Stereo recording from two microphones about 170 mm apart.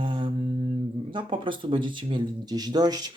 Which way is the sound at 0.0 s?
30° right (ahead or behind).